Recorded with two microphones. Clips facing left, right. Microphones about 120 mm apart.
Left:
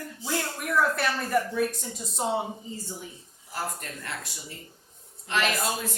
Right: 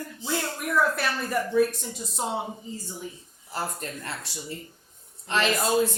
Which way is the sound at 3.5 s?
30° right (ahead or behind).